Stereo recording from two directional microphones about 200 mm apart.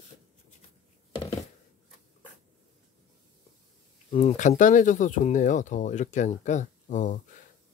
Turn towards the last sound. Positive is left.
turn(degrees=35)  # may be behind; listen again after turning